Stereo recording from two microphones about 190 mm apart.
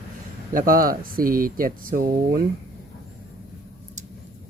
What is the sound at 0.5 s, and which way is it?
Speech, 50° right (ahead or behind).